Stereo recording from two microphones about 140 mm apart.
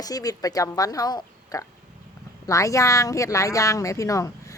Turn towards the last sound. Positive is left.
turn(degrees=20)  # may be behind; listen again after turning